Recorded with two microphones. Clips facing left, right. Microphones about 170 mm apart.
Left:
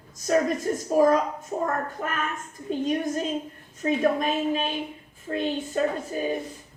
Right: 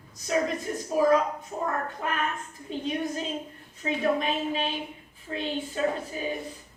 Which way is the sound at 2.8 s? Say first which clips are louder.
Left 4 dB; 45° left (ahead or behind).